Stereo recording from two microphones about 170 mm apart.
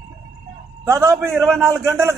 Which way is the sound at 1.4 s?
Centre (ahead or behind).